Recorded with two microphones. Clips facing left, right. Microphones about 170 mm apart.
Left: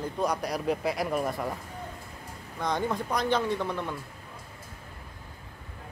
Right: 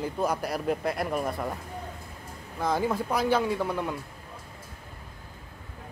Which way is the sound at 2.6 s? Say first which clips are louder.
Right 2 dB; 5° right (ahead or behind).